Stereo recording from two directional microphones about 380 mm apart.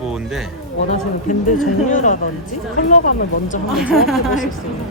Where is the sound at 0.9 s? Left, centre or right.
Centre.